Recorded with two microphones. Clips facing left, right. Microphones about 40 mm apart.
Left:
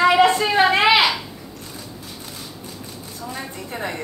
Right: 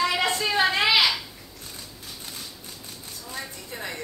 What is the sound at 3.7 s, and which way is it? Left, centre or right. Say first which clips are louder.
Speech: left 8 dB; left.